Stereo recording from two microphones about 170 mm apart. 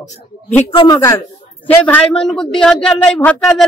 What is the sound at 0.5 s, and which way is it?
Speech, 10° left (ahead or behind).